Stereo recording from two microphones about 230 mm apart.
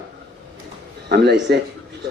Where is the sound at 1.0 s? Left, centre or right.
Right.